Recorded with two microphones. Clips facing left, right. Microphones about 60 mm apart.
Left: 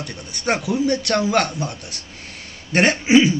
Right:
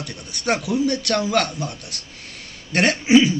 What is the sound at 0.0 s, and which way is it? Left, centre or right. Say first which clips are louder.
A man's voice: left 1 dB; centre.